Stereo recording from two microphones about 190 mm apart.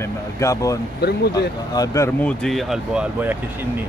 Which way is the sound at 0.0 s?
15° left (ahead or behind).